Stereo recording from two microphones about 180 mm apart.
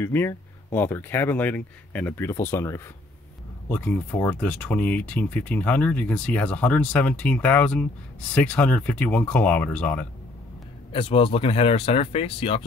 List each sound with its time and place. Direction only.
0.0 s speech: 15° left (ahead or behind)
10.9 s speech: 30° left (ahead or behind)